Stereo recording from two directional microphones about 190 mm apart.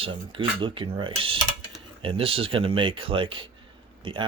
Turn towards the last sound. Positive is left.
turn(degrees=-25)  # may be behind; listen again after turning